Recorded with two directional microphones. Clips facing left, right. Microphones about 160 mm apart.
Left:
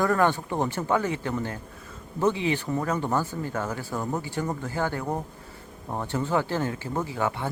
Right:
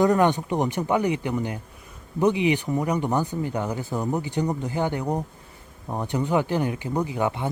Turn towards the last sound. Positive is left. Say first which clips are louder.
# right 3 dB
turn(degrees=-20)  # may be behind; listen again after turning